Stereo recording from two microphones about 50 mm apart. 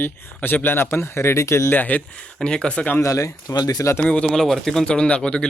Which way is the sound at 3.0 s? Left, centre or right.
Left.